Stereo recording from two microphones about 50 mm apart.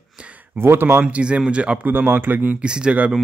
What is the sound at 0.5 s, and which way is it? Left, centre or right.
Speech, right.